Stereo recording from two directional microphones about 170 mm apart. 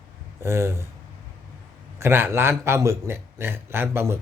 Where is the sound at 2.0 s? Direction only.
15° right (ahead or behind).